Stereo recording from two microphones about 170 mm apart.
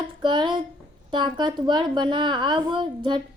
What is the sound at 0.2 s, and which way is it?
A woman's voice, 25° right (ahead or behind).